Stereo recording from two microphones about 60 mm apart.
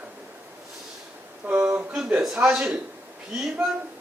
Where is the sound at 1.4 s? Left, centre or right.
Right.